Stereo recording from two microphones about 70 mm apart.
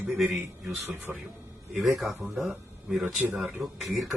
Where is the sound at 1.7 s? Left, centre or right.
Centre.